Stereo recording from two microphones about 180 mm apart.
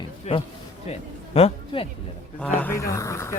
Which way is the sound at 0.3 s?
40° left (ahead or behind).